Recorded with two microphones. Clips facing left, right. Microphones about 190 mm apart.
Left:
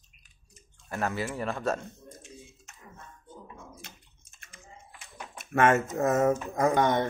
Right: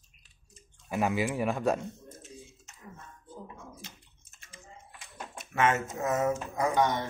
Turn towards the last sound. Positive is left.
turn(degrees=55)  # may be behind; listen again after turning